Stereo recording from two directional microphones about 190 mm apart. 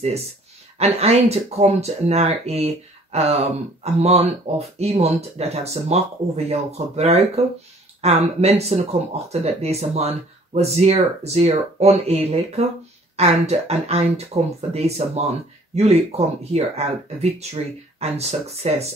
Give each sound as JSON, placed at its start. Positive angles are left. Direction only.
{"t": 0.7, "sound": "speech", "side_deg": -35}